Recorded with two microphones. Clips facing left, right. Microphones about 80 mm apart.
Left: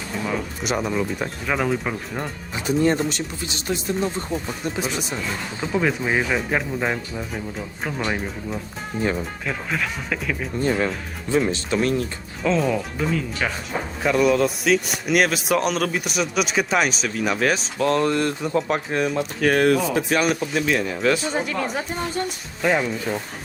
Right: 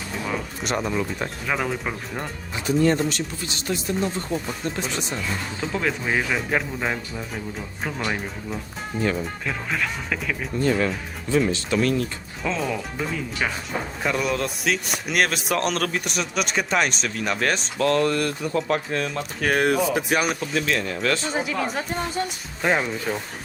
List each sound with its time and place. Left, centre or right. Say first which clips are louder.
0.3 s speech: left 2 dB; centre
2.6 s speech: even; left
4.3 s speech: even; centre
10.6 s speech: even; left
12.4 s speech: left 5 dB; centre
17.7 s speech: right 1 dB; centre
19.5 s speech: left 1 dB; centre
20.5 s speech: left 2 dB; centre
21.3 s speech: left 1 dB; centre